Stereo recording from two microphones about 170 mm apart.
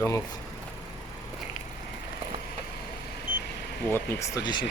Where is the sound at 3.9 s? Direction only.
15° left (ahead or behind).